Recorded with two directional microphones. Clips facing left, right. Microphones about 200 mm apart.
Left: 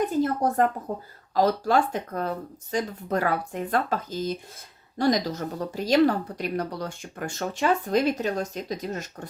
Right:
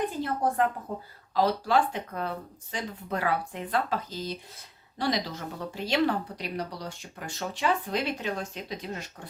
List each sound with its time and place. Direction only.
0.0 s speech: 45° left (ahead or behind)